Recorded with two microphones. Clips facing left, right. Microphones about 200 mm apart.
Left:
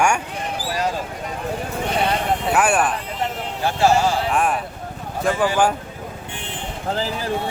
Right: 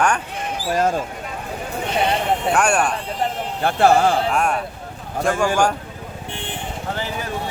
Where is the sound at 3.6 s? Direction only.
55° right (ahead or behind).